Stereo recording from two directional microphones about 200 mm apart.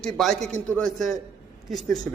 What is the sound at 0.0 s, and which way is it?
A man's voice, centre (ahead or behind).